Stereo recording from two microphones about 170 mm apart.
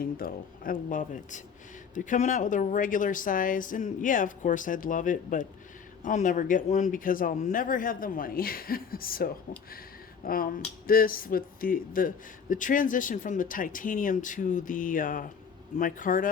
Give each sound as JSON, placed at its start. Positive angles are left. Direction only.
{"t": 0.0, "sound": "a man's voice", "side_deg": 60}